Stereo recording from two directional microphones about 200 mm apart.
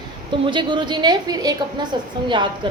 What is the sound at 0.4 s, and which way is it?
A woman's voice, 25° right (ahead or behind).